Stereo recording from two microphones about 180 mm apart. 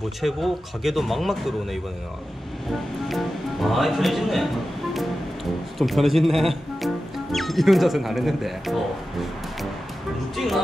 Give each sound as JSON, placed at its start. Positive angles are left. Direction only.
{"t": 0.2, "sound": "speech", "side_deg": 0}
{"t": 4.9, "sound": "music", "side_deg": 0}
{"t": 7.3, "sound": "speech", "side_deg": 0}
{"t": 10.3, "sound": "speech", "side_deg": 0}